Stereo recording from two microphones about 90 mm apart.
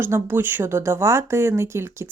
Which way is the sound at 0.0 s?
25° right (ahead or behind).